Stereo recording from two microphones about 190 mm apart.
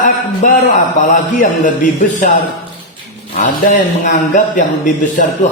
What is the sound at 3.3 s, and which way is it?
Speech, 40° left (ahead or behind).